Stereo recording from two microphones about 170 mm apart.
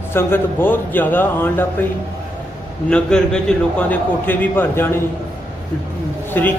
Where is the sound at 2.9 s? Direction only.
5° left (ahead or behind).